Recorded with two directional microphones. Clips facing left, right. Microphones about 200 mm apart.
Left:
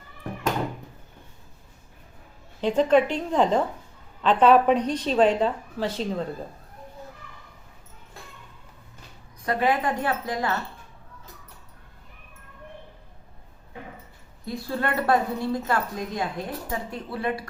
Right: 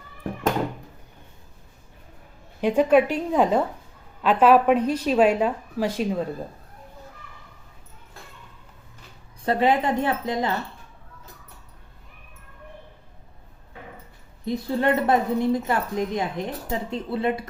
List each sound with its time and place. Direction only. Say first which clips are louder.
2.6 s speech: right 2 dB; 10° right (ahead or behind)
9.4 s speech: right 3 dB; 25° right (ahead or behind)
14.4 s speech: right 6 dB; 20° right (ahead or behind)